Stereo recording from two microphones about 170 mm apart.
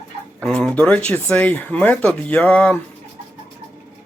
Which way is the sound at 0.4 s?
5° left (ahead or behind).